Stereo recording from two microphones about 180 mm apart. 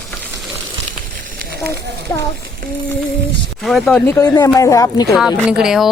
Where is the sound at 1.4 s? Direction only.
60° right (ahead or behind).